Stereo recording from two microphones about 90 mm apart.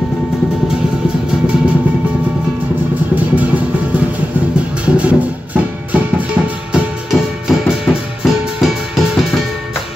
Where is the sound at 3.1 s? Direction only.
15° right (ahead or behind).